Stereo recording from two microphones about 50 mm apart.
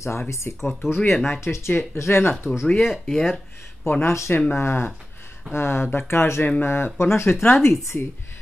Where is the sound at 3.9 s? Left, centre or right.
Left.